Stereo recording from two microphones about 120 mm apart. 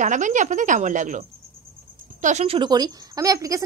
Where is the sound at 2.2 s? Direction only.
70° right (ahead or behind).